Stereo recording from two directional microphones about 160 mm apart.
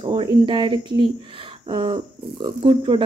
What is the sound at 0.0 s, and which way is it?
Speech, 30° right (ahead or behind).